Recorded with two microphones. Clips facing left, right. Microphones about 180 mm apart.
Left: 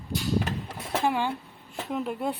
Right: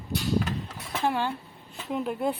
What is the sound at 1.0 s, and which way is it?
Speech, 10° left (ahead or behind).